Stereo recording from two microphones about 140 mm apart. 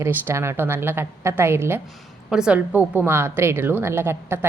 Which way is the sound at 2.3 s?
5° right (ahead or behind).